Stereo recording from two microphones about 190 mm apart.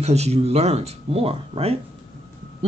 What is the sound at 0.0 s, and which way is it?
Speech, 35° right (ahead or behind).